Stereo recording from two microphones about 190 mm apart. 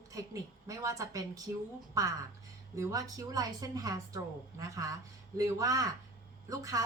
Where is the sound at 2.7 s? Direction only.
20° right (ahead or behind).